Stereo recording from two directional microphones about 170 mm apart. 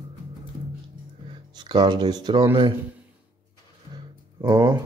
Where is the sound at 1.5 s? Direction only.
25° right (ahead or behind).